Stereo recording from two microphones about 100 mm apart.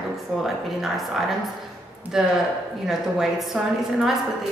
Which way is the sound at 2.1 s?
5° right (ahead or behind).